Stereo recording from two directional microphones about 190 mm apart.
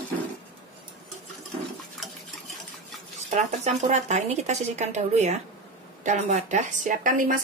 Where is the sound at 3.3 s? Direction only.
35° right (ahead or behind).